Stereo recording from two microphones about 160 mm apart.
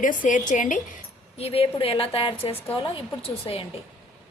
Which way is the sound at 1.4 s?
35° left (ahead or behind).